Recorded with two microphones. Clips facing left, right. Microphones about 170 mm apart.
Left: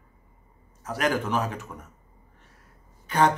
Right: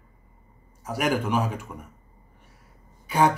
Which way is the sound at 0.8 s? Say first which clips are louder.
Right 1 dB; 10° right (ahead or behind).